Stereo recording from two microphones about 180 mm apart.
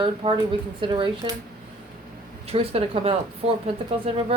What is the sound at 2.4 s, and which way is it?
Speech, 35° right (ahead or behind).